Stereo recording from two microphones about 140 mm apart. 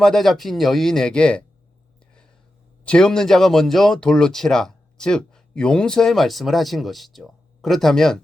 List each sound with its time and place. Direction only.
0.0 s speech: 5° left (ahead or behind)
2.8 s speech: 5° left (ahead or behind)